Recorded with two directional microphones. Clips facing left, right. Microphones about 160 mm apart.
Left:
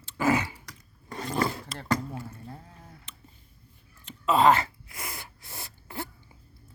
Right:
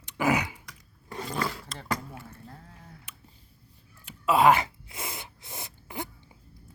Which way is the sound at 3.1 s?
10° right (ahead or behind).